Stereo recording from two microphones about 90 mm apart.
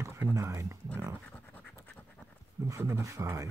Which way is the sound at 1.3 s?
15° left (ahead or behind).